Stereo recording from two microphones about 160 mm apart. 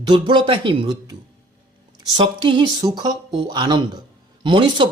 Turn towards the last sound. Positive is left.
turn(degrees=-30)  # may be behind; listen again after turning